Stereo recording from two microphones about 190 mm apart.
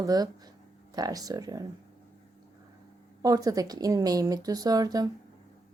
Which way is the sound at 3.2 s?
20° right (ahead or behind).